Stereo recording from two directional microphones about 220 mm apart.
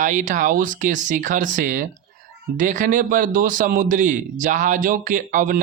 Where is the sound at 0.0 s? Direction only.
35° right (ahead or behind).